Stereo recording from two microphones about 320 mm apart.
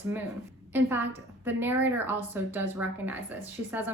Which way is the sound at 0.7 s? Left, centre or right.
Centre.